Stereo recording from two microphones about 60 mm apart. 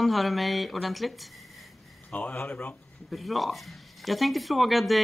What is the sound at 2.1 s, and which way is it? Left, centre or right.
Speech, left.